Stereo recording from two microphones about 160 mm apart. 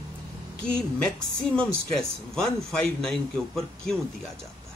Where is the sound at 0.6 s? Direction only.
5° left (ahead or behind).